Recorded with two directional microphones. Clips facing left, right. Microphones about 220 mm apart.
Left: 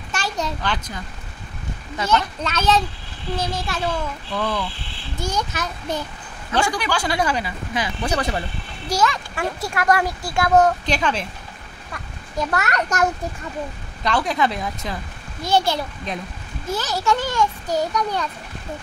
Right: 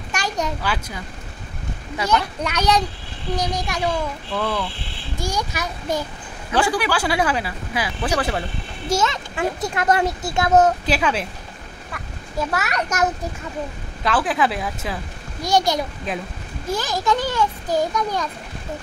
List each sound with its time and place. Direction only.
0.1 s a child's voice: 15° right (ahead or behind)
4.4 s a child's voice: 5° right (ahead or behind)
8.8 s a child's voice: 25° right (ahead or behind)
10.9 s a child's voice: 5° right (ahead or behind)
12.4 s speech: centre (ahead or behind)
14.0 s speech: 5° right (ahead or behind)
15.4 s a child's voice: 15° right (ahead or behind)